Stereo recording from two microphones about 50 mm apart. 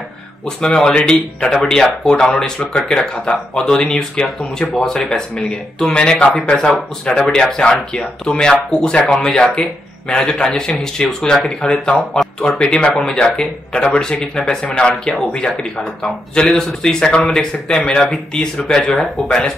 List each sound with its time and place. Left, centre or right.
0.6 s speech: centre